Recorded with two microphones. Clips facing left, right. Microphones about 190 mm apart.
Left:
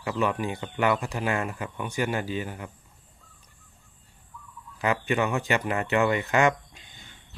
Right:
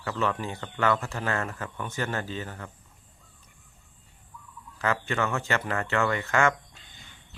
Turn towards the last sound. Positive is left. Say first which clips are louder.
# left 2 dB
turn(degrees=15)  # may be behind; listen again after turning